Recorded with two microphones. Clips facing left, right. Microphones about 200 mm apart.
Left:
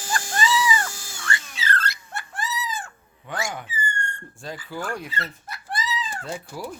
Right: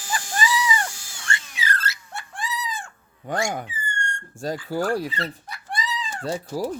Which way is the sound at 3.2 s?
45° right (ahead or behind).